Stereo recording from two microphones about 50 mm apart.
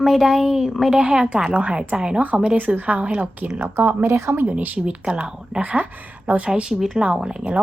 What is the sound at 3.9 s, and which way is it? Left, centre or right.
Speech, right.